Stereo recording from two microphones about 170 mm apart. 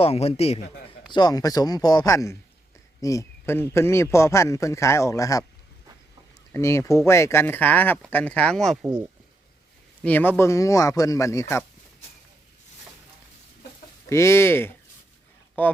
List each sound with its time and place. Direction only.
0.0 s a man's voice: 35° left (ahead or behind)
1.1 s a man's voice: 25° left (ahead or behind)
6.5 s a man's voice: 15° left (ahead or behind); by 8.9 s centre (ahead or behind)
10.0 s a man's voice: 10° left (ahead or behind)
14.1 s a man's voice: 15° left (ahead or behind)